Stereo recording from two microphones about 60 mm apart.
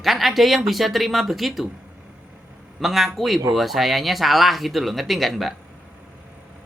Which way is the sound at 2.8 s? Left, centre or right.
Centre.